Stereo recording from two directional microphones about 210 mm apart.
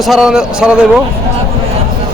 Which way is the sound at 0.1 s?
Centre (ahead or behind).